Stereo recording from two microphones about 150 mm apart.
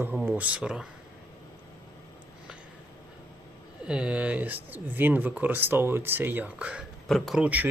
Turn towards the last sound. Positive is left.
turn(degrees=-10)  # may be behind; listen again after turning